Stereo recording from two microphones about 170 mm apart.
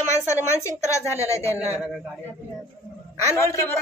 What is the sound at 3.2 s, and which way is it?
Speech, 20° left (ahead or behind).